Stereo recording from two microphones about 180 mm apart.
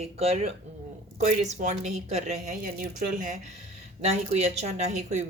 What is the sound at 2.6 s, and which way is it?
A woman's voice, 50° right (ahead or behind).